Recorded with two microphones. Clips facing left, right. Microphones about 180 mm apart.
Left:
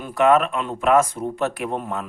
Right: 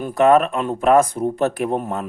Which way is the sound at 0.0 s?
40° right (ahead or behind).